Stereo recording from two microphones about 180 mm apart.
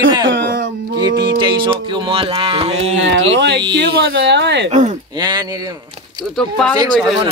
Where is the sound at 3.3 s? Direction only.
75° right (ahead or behind).